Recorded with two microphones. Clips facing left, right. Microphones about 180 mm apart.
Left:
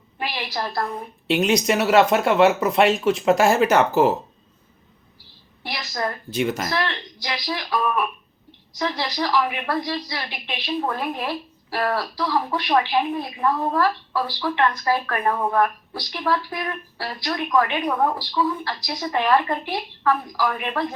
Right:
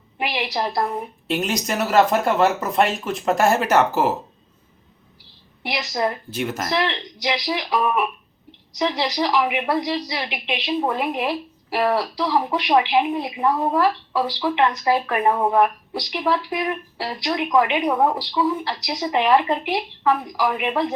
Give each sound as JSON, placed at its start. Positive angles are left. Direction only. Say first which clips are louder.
{"t": 0.2, "sound": "speech", "louder": "right 4 dB", "side_deg": -20}
{"t": 1.3, "sound": "speech", "louder": "left 4 dB", "side_deg": 0}
{"t": 5.6, "sound": "speech", "louder": "right 4 dB", "side_deg": -20}
{"t": 6.3, "sound": "speech", "louder": "left 2 dB", "side_deg": 0}
{"t": 6.7, "sound": "speech", "louder": "right 3 dB", "side_deg": -20}